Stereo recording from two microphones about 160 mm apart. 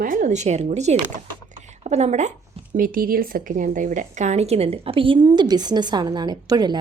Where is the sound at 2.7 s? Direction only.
60° right (ahead or behind).